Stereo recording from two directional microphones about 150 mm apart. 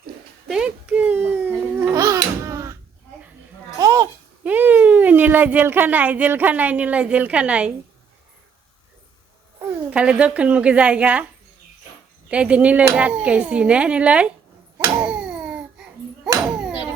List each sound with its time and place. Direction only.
0.5 s babbling: 5° right (ahead or behind)
3.8 s babbling: 25° right (ahead or behind)
4.4 s speech: 10° right (ahead or behind)
9.9 s speech: 5° right (ahead or behind)
12.3 s speech: 10° right (ahead or behind)
15.0 s babbling: 5° right (ahead or behind)